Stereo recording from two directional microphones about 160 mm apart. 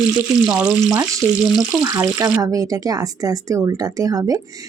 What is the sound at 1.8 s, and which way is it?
Speech, 25° right (ahead or behind).